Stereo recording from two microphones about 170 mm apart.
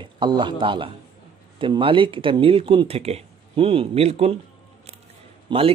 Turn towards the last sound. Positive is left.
turn(degrees=-35)  # may be behind; listen again after turning